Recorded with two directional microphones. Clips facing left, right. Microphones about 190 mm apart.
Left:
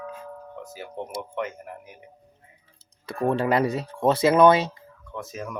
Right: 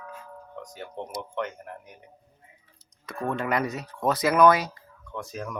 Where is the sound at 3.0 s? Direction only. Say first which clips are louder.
Left 6 dB; 30° left (ahead or behind).